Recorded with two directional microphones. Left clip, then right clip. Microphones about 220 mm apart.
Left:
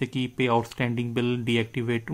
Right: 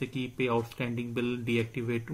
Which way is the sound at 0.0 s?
40° left (ahead or behind).